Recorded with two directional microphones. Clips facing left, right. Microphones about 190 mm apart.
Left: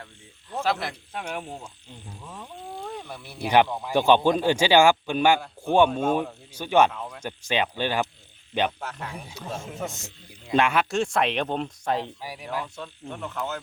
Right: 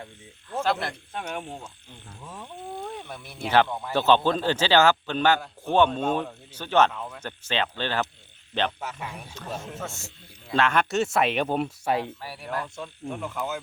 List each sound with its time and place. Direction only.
0.5 s speech: 5° left (ahead or behind)
2.2 s wild animals: 5° right (ahead or behind)
3.4 s speech: 10° left (ahead or behind)
8.8 s speech: 5° right (ahead or behind)
9.2 s speech: 10° left (ahead or behind)
9.8 s speech: 15° left (ahead or behind)
10.8 s speech: 5° right (ahead or behind)
12.0 s speech: 15° left (ahead or behind)
12.7 s speech: 5° right (ahead or behind)